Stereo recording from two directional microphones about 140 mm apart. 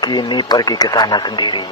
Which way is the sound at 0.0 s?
30° left (ahead or behind).